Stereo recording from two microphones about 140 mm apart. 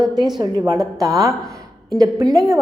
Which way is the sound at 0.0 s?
25° right (ahead or behind).